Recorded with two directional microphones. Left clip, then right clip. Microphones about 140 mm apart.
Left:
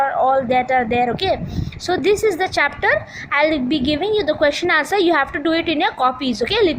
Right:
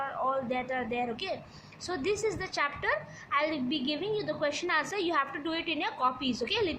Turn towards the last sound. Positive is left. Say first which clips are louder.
# left 13 dB
turn(degrees=55)  # may be behind; listen again after turning